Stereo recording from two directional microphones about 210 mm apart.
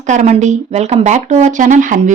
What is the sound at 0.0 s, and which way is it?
Speech, 35° right (ahead or behind).